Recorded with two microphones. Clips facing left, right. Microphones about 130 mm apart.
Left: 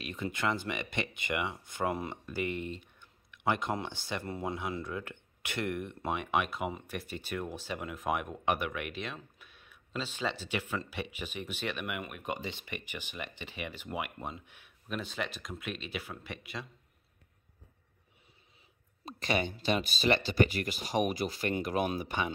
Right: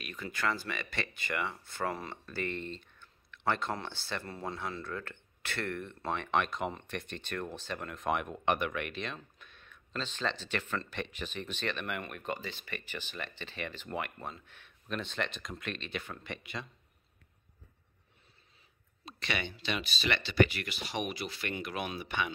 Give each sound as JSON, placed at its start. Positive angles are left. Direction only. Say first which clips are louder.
{"t": 0.0, "sound": "speech", "louder": "left 2 dB", "side_deg": 25}
{"t": 19.0, "sound": "speech", "louder": "left 5 dB", "side_deg": 40}